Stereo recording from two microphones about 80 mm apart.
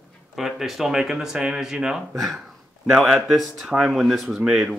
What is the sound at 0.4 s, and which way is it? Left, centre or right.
Speech, centre.